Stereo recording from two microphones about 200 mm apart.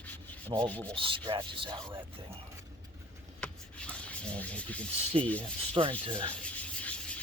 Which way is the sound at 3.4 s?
5° left (ahead or behind).